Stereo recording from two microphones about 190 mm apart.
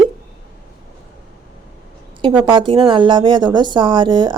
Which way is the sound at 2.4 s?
25° right (ahead or behind).